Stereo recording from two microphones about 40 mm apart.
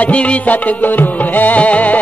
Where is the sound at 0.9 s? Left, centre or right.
Left.